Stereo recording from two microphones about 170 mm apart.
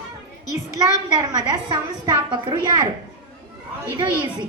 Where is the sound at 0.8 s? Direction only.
20° right (ahead or behind).